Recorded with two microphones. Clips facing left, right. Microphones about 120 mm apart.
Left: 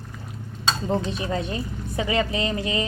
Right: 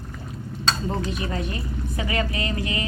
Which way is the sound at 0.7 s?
25° left (ahead or behind).